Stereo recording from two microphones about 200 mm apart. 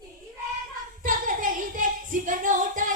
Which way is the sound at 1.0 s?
40° right (ahead or behind).